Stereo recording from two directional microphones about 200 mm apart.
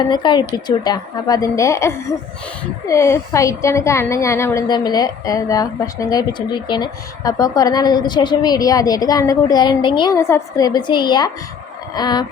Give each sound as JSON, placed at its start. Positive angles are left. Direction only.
{"t": 0.1, "sound": "a woman's voice", "side_deg": 20}